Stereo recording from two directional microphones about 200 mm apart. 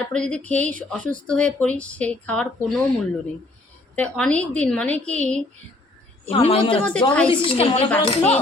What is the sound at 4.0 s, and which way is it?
A woman's voice, 5° left (ahead or behind).